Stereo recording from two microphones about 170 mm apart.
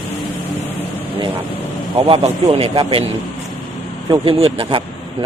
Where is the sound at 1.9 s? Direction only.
35° right (ahead or behind).